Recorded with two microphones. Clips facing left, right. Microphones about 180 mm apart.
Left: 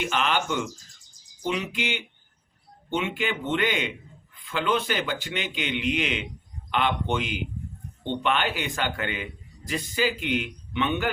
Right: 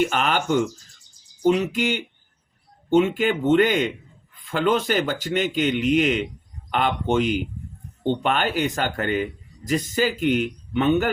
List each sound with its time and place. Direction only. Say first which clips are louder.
0.0 s speech: right 4 dB; 45° right (ahead or behind)